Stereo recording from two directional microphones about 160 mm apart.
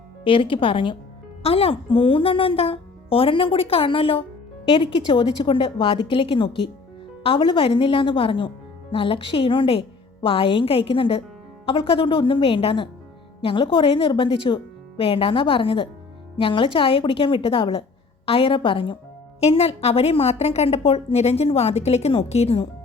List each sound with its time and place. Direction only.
0.3 s speech: 35° left (ahead or behind)